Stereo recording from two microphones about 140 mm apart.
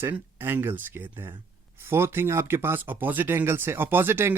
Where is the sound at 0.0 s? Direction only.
15° right (ahead or behind).